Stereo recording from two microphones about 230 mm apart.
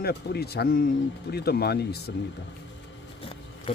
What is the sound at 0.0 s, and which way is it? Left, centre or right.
Speech, left.